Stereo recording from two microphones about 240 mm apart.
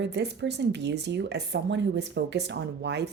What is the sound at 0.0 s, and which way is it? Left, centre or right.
A woman's voice, right.